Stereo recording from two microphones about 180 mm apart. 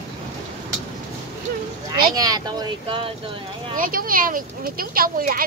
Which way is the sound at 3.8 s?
50° right (ahead or behind).